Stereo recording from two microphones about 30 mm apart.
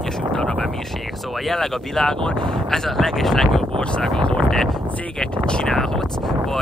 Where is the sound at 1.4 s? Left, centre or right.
Centre.